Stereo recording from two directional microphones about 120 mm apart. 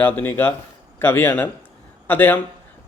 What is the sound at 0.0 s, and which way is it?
Speech, 15° left (ahead or behind).